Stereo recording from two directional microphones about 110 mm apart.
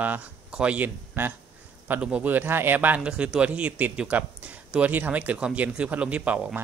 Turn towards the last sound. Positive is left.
turn(degrees=-15)  # may be behind; listen again after turning